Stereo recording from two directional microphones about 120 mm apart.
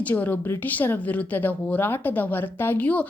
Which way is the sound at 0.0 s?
15° left (ahead or behind).